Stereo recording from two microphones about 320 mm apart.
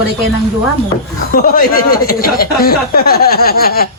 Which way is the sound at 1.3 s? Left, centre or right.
Left.